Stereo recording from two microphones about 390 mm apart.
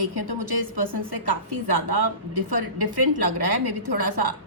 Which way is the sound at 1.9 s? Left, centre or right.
Right.